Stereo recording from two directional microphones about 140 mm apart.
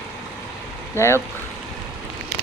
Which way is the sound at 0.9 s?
20° left (ahead or behind).